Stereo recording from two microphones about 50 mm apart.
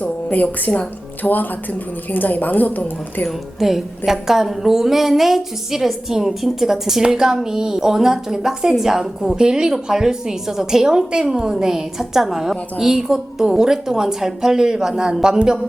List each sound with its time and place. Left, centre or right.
0.0 s a sound: left
0.6 s a woman's voice: left
3.2 s a woman's voice: centre